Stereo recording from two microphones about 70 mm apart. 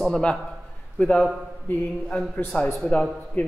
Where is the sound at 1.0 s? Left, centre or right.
Left.